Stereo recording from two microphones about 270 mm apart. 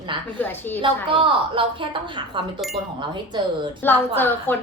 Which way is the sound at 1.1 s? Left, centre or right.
Centre.